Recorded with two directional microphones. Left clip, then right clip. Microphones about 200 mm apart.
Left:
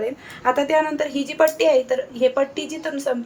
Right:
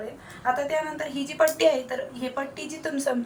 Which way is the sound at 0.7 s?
45° left (ahead or behind).